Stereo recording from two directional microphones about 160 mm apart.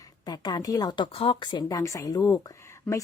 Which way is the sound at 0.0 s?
25° left (ahead or behind).